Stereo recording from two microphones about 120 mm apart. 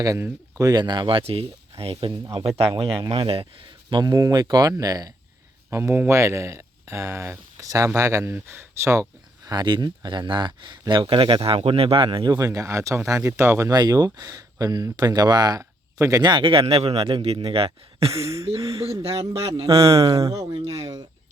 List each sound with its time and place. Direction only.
0.0 s speech: 30° right (ahead or behind); by 3.4 s 50° right (ahead or behind)
3.8 s speech: 35° right (ahead or behind)
5.7 s speech: 20° right (ahead or behind)
13.7 s speech: 35° right (ahead or behind)
16.3 s speech: 45° right (ahead or behind)
18.1 s speech: 25° right (ahead or behind)
18.4 s speech: 45° right (ahead or behind)
19.2 s mantra: 55° right (ahead or behind)
19.7 s speech: 50° right (ahead or behind)